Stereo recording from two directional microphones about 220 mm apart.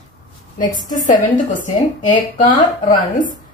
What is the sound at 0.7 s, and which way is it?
A woman's voice, 35° left (ahead or behind).